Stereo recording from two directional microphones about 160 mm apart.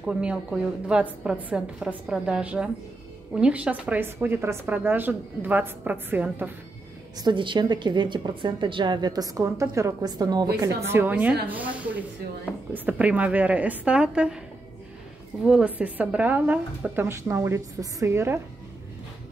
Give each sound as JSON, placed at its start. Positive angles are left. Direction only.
{"t": 0.0, "sound": "a woman's voice", "side_deg": -5}
{"t": 7.2, "sound": "a woman's voice", "side_deg": -30}
{"t": 10.9, "sound": "a woman's voice", "side_deg": -10}
{"t": 15.4, "sound": "a woman's voice", "side_deg": -5}